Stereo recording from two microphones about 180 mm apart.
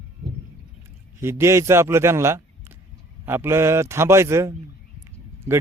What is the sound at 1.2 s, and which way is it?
Speech, 15° right (ahead or behind).